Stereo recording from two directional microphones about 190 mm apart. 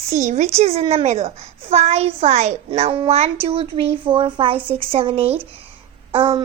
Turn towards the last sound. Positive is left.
turn(degrees=-25)  # may be behind; listen again after turning